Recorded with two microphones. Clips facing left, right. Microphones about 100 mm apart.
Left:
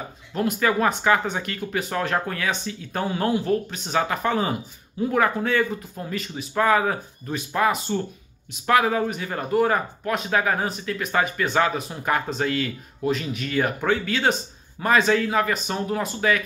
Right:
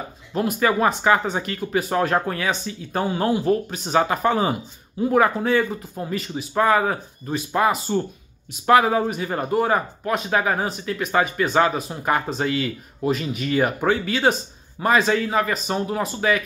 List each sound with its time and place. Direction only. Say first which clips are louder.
0.3 s speech: right 2 dB; 10° right (ahead or behind)
3.9 s speech: right 3 dB; 15° right (ahead or behind)
8.8 s speech: right 2 dB; 20° right (ahead or behind)